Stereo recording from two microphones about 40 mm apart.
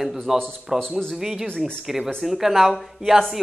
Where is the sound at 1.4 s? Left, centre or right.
Left.